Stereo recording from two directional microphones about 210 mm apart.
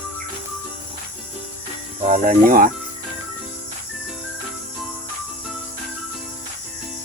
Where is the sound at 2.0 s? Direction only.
40° right (ahead or behind).